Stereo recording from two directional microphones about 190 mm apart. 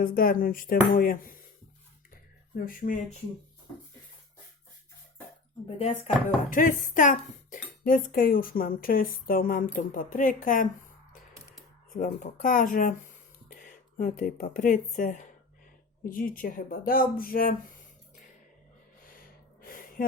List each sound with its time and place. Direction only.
0.0 s speech: 50° left (ahead or behind)
2.6 s speech: 45° left (ahead or behind)
5.6 s speech: 30° left (ahead or behind)
6.5 s speech: 45° left (ahead or behind)
11.9 s speech: 45° left (ahead or behind)
19.6 s a sound: 45° left (ahead or behind)